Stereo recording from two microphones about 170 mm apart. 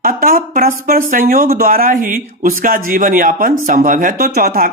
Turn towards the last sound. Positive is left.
turn(degrees=-60)  # may be behind; listen again after turning